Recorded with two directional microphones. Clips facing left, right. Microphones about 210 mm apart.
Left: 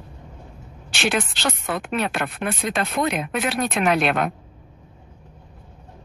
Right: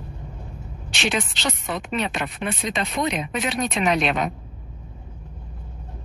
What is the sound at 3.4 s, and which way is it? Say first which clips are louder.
Speech: left 1 dB; 5° left (ahead or behind).